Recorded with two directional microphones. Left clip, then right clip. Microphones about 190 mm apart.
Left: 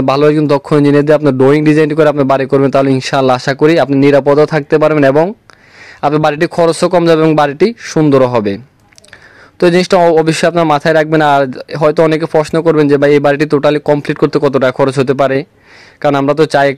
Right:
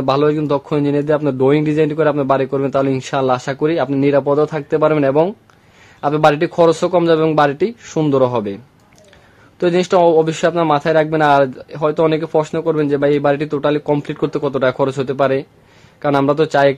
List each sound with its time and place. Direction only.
0.0 s a man's voice: 40° left (ahead or behind)
9.6 s a man's voice: 35° left (ahead or behind)